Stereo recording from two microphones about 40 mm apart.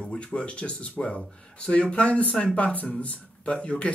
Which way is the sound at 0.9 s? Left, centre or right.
Left.